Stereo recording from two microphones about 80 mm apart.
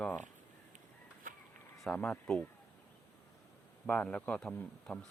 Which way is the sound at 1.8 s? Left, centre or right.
Centre.